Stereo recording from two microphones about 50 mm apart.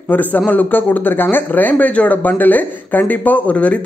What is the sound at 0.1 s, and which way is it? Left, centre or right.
A man's voice, left.